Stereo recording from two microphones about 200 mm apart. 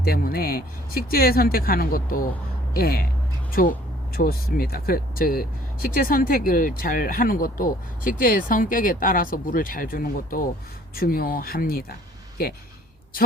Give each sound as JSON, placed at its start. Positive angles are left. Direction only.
{"t": 0.0, "sound": "speech", "side_deg": 50}
{"t": 13.1, "sound": "a woman's voice", "side_deg": 45}